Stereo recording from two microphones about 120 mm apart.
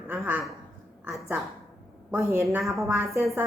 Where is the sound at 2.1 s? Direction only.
25° right (ahead or behind).